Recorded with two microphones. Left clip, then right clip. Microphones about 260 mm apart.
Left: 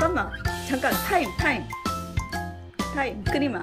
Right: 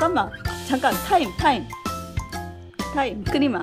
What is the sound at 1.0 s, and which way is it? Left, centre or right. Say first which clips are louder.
Speech: right 4 dB; centre.